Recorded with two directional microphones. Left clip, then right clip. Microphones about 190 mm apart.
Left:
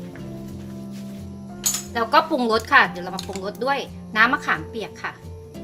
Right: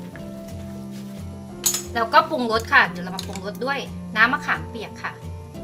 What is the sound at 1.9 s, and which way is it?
Speech, 40° left (ahead or behind).